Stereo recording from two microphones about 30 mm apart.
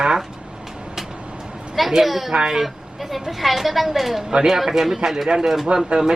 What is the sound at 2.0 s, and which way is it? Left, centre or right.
Speech, centre.